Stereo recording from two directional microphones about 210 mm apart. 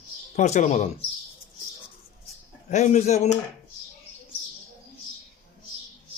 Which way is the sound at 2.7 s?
35° left (ahead or behind).